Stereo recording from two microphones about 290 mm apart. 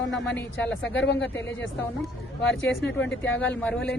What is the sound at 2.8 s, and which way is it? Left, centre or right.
Speech, left.